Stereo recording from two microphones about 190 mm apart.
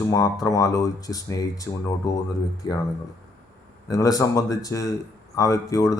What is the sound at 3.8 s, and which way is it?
Speech, 20° left (ahead or behind).